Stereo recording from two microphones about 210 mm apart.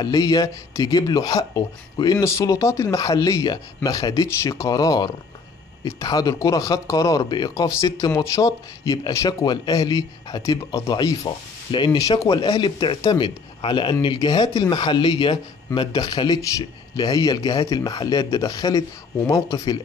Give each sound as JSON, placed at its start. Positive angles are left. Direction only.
{"t": 0.0, "sound": "speech", "side_deg": 20}